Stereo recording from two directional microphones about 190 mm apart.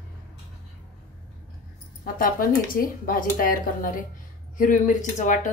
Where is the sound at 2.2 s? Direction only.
50° left (ahead or behind).